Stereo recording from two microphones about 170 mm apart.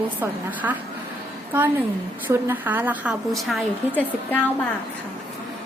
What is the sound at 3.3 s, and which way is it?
Speech, centre (ahead or behind).